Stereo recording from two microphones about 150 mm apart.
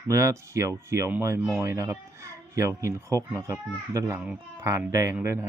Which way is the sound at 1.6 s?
20° right (ahead or behind).